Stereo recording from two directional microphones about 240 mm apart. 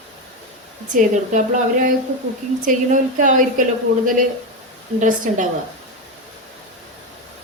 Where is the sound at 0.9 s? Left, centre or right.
Right.